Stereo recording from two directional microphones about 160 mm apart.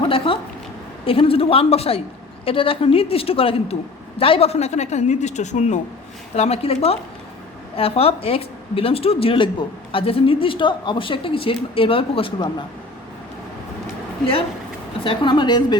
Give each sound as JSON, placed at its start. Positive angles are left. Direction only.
{"t": 1.0, "sound": "speech", "side_deg": 35}
{"t": 15.0, "sound": "a woman's voice", "side_deg": 30}